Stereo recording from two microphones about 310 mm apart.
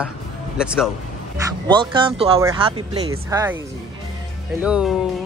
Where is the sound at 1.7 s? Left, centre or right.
Centre.